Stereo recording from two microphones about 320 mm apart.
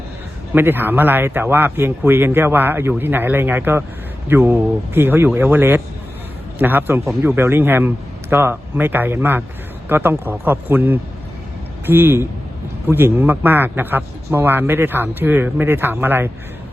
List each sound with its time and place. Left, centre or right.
0.5 s a man's voice: centre